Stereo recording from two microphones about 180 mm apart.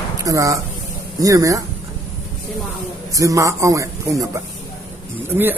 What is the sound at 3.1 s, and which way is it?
Speech, 20° right (ahead or behind).